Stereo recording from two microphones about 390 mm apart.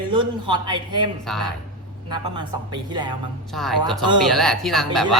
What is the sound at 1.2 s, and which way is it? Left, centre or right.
Speech, centre.